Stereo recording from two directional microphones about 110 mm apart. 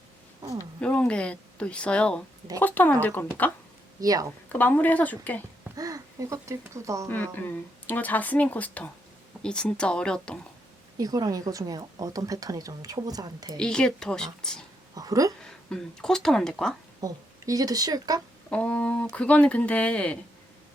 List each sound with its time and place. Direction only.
0.8 s speech: 10° left (ahead or behind)
4.0 s speech: 35° right (ahead or behind)
4.5 s speech: 15° left (ahead or behind)
5.7 s speech: 30° right (ahead or behind)
7.1 s speech: 15° left (ahead or behind)
10.9 s speech: 35° right (ahead or behind)
13.6 s speech: 5° left (ahead or behind)
14.9 s a sound: 30° right (ahead or behind)
15.4 s speech: 5° left (ahead or behind)
17.0 s speech: 35° right (ahead or behind)
18.5 s speech: 10° left (ahead or behind)